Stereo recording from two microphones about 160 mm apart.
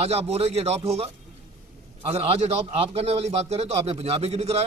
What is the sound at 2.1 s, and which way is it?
Speech, 40° right (ahead or behind).